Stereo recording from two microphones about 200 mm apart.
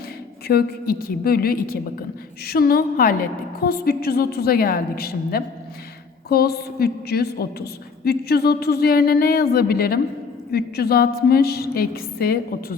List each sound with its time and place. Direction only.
0.4 s a woman's voice: 50° left (ahead or behind)